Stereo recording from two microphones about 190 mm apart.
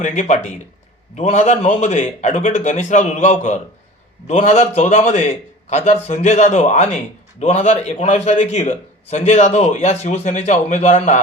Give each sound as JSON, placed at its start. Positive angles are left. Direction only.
{"t": 0.0, "sound": "a man's voice", "side_deg": 40}